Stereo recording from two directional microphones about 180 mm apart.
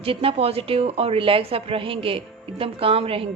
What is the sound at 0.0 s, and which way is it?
A woman's voice, 30° right (ahead or behind).